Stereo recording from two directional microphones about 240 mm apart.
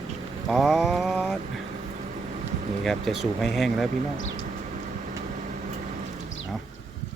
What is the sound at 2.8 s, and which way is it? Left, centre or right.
Speech, centre.